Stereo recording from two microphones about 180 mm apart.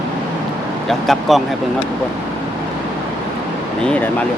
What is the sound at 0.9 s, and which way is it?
Speech, centre (ahead or behind).